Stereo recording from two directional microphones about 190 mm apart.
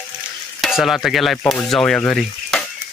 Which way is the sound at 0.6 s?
Centre (ahead or behind).